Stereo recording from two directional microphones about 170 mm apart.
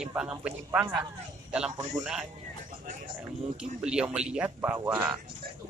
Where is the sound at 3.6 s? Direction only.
5° right (ahead or behind).